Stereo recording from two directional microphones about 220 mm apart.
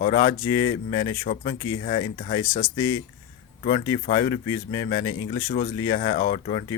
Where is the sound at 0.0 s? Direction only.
20° left (ahead or behind).